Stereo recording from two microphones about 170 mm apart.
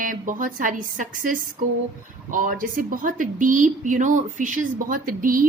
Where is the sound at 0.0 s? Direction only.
50° right (ahead or behind).